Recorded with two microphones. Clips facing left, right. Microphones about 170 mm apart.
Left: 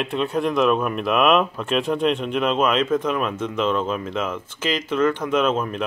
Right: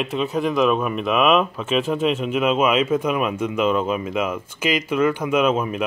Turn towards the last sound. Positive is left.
turn(degrees=-10)  # may be behind; listen again after turning